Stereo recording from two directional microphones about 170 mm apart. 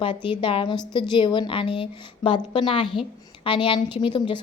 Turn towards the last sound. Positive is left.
turn(degrees=30)  # may be behind; listen again after turning